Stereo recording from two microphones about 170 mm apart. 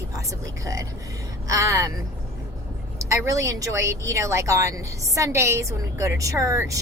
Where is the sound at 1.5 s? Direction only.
20° right (ahead or behind).